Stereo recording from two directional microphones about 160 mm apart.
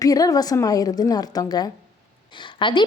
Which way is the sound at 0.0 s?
20° left (ahead or behind).